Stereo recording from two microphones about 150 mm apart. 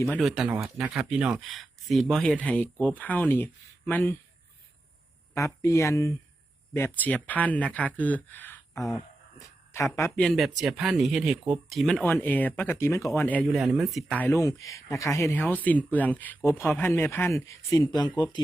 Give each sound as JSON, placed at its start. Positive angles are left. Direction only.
{"t": 0.2, "sound": "speech", "side_deg": 0}
{"t": 5.6, "sound": "speech", "side_deg": 20}
{"t": 9.4, "sound": "a sound", "side_deg": 20}
{"t": 10.2, "sound": "speech", "side_deg": 0}
{"t": 13.5, "sound": "speech", "side_deg": 0}
{"t": 14.4, "sound": "speech", "side_deg": 20}